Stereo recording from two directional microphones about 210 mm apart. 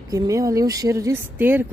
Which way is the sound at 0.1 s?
15° right (ahead or behind).